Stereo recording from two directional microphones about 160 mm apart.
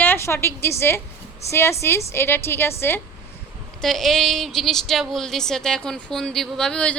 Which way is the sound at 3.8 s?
Centre (ahead or behind).